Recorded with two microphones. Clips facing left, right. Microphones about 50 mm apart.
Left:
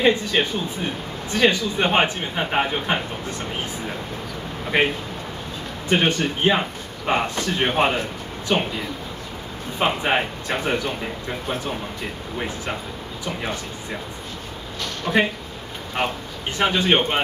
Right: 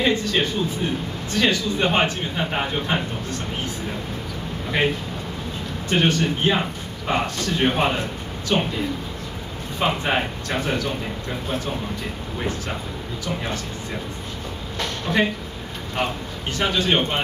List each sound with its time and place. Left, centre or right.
0.0 s a man's voice: centre
4.7 s a man's voice: centre
9.8 s a man's voice: centre
12.4 s a man's voice: centre
15.1 s speech: centre
16.5 s a man's voice: left